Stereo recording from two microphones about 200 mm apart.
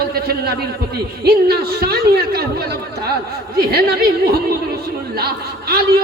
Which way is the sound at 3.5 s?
50° right (ahead or behind).